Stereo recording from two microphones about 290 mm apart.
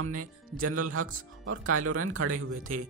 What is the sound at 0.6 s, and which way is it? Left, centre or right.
Speech, right.